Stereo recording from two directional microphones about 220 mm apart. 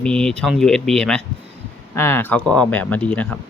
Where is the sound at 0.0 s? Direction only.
5° left (ahead or behind).